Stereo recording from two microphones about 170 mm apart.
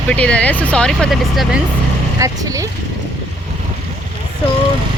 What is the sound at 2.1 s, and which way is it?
Speech, 20° right (ahead or behind).